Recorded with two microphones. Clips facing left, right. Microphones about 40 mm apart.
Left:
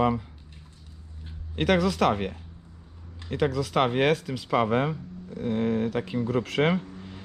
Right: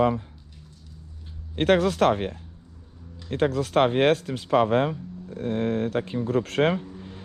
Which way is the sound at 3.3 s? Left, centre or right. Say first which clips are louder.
Right 3 dB; right.